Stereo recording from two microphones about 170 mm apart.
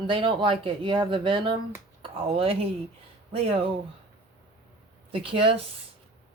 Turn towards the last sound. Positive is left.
turn(degrees=-35)  # may be behind; listen again after turning